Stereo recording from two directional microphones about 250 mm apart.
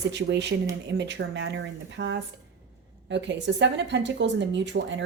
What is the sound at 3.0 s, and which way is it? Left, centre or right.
Speech, right.